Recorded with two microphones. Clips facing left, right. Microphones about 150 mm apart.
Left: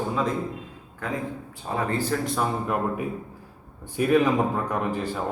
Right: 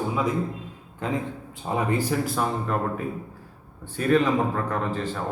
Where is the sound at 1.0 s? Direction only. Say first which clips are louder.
Right 2 dB; 20° right (ahead or behind); by 2.5 s 5° right (ahead or behind).